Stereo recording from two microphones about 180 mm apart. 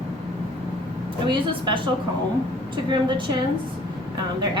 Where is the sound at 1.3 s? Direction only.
25° right (ahead or behind).